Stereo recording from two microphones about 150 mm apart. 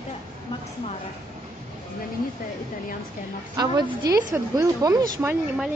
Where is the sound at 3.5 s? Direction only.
25° right (ahead or behind).